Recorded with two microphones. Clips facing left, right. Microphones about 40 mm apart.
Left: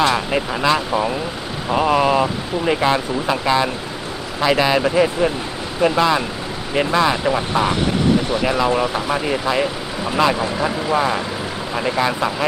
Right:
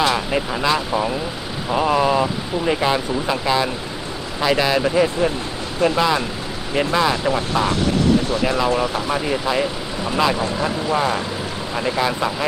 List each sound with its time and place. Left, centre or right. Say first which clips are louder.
0.3 s speech: left 2 dB; centre